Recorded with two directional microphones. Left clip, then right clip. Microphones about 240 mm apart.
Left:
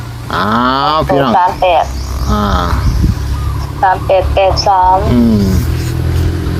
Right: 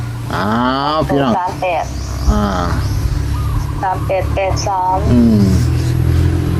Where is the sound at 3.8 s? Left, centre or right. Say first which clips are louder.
Left 7 dB; left.